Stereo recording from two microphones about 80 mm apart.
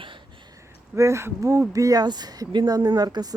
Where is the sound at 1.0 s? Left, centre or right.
Right.